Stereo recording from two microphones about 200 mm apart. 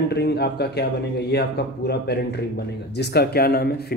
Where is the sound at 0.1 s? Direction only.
55° left (ahead or behind).